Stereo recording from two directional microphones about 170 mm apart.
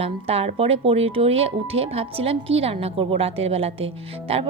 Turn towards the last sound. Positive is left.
turn(degrees=-35)  # may be behind; listen again after turning